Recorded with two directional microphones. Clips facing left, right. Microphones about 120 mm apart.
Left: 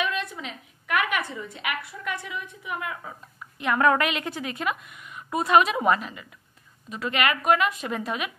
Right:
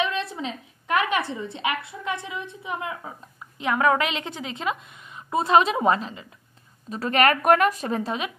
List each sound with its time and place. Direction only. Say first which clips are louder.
0.0 s a sound: right 3 dB; 30° right (ahead or behind)
1.3 s a woman's voice: right 4 dB; 25° right (ahead or behind)
3.7 s a woman's voice: even; 10° right (ahead or behind)
4.0 s a woman's voice: left 1 dB; 20° right (ahead or behind)